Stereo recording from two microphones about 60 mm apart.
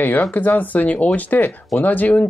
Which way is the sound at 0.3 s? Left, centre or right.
Left.